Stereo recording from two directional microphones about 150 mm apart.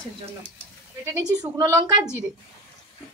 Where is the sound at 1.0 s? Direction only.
20° right (ahead or behind).